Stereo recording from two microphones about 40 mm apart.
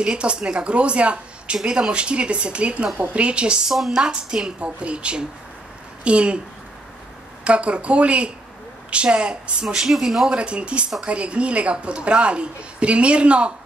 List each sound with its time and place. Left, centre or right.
0.0 s a woman's voice: right
3.6 s speech: centre
3.9 s a woman's voice: right
7.4 s a woman's voice: right
9.8 s speech: centre
10.2 s a woman's voice: right